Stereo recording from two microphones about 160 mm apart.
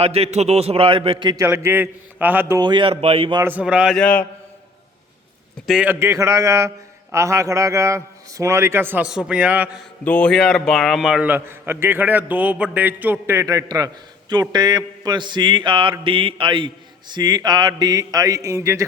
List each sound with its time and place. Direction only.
0.0 s a man's voice: 40° right (ahead or behind)
1.5 s a man's voice: 15° right (ahead or behind)
2.6 s a man's voice: 30° right (ahead or behind)
3.4 s a man's voice: 10° right (ahead or behind)
5.6 s a man's voice: 5° right (ahead or behind)
10.0 s a man's voice: 10° left (ahead or behind); by 14.4 s 25° right (ahead or behind)
14.5 s mantra: 25° right (ahead or behind)